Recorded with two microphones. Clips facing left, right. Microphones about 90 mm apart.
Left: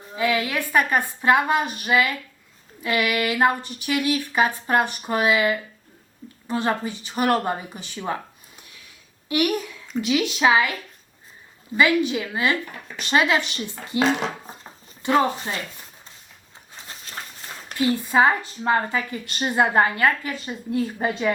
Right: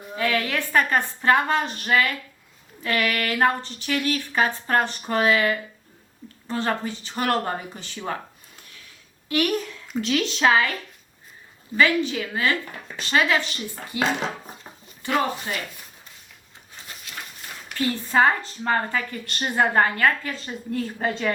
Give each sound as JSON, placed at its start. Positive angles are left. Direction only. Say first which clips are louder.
{"t": 0.2, "sound": "speech", "louder": "left 1 dB", "side_deg": 10}
{"t": 8.0, "sound": "a sound", "louder": "left 2 dB", "side_deg": 15}
{"t": 9.3, "sound": "speech", "louder": "left 1 dB", "side_deg": 15}
{"t": 11.8, "sound": "a woman's voice", "louder": "left 1 dB", "side_deg": 15}
{"t": 15.0, "sound": "a woman's voice", "louder": "left 4 dB", "side_deg": 25}
{"t": 17.1, "sound": "a sound", "louder": "left 2 dB", "side_deg": 35}
{"t": 17.7, "sound": "speech", "louder": "left 2 dB", "side_deg": 15}